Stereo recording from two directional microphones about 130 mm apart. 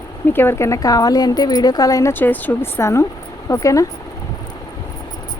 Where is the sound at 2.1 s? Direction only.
15° left (ahead or behind).